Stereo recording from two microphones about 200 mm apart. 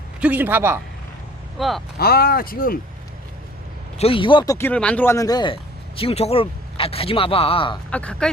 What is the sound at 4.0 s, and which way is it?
Speech, 25° left (ahead or behind).